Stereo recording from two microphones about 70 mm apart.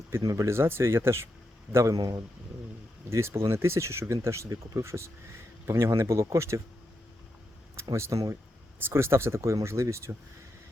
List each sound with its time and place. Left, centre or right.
0.3 s speech: right
2.0 s a man's voice: right
3.1 s speech: right
7.9 s speech: right